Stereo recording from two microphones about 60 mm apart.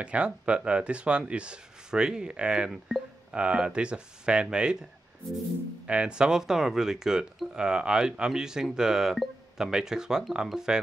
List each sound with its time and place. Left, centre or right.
0.0 s speech: centre
5.9 s speech: centre